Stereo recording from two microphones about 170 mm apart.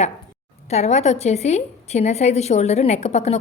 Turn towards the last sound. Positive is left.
turn(degrees=40)  # may be behind; listen again after turning